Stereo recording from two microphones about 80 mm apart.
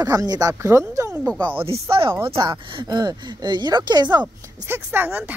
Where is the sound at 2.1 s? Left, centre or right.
Right.